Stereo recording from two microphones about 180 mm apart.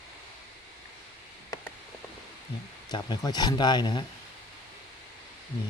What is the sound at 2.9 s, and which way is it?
Speech, 25° left (ahead or behind).